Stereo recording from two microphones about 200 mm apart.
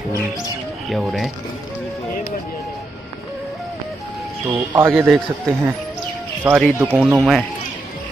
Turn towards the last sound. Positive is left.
turn(degrees=-5)  # may be behind; listen again after turning